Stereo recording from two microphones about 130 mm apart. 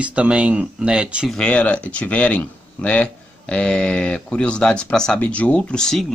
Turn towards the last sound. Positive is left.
turn(degrees=0)  # may be behind; listen again after turning